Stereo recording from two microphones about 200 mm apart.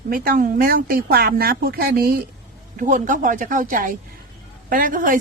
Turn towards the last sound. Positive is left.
turn(degrees=-40)  # may be behind; listen again after turning